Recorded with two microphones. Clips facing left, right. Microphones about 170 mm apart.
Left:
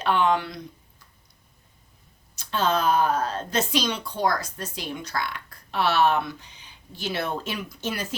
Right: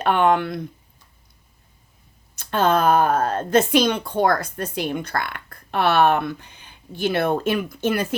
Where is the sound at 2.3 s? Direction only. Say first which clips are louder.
Right 5 dB; 55° right (ahead or behind).